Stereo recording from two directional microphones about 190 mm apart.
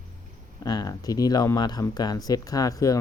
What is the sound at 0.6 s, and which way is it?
Speech, 20° left (ahead or behind).